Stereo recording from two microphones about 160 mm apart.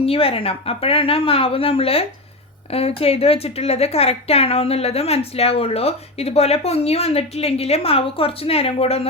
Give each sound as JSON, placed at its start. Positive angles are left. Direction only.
{"t": 0.0, "sound": "a woman's voice", "side_deg": 35}